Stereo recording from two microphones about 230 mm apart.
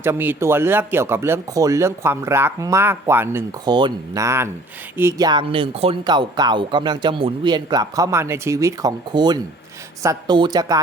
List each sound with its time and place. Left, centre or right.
0.0 s speech: centre